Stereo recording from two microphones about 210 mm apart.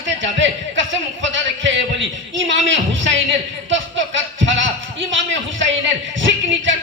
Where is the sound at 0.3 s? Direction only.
65° right (ahead or behind).